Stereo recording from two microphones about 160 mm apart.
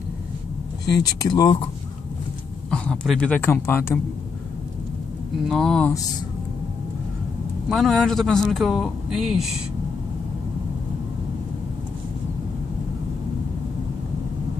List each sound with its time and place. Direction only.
1.0 s speech: 25° left (ahead or behind)
2.7 s a man's voice: 5° left (ahead or behind)
5.5 s speech: centre (ahead or behind)
7.7 s speech: centre (ahead or behind)